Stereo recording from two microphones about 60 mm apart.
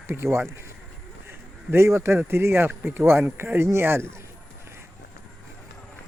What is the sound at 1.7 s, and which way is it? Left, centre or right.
Speech, right.